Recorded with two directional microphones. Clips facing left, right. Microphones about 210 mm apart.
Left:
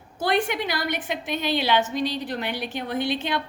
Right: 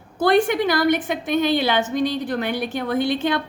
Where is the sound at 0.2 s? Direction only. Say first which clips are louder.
Right 7 dB; 50° right (ahead or behind).